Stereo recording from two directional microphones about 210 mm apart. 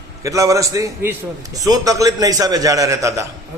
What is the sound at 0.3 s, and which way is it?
A man's voice, 15° right (ahead or behind).